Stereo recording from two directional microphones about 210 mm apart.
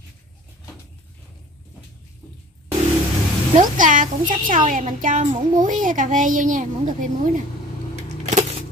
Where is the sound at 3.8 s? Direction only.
40° right (ahead or behind).